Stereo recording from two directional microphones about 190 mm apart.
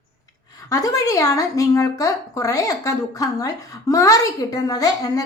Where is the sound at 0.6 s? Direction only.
20° left (ahead or behind).